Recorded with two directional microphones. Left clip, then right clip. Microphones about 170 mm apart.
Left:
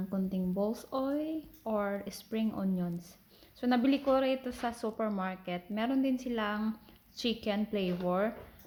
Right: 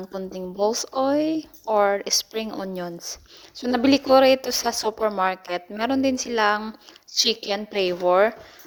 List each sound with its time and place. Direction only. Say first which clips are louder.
0.6 s a woman's voice: right 13 dB; 50° right (ahead or behind)